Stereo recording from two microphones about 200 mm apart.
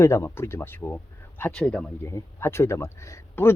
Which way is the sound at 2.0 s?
15° left (ahead or behind).